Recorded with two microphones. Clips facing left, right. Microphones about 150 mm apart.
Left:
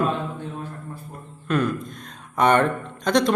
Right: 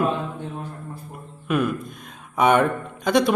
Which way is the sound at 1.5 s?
5° right (ahead or behind).